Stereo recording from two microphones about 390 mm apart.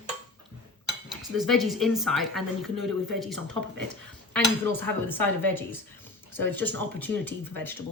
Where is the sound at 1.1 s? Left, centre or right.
Centre.